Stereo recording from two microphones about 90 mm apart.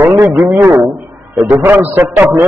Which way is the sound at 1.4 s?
20° right (ahead or behind).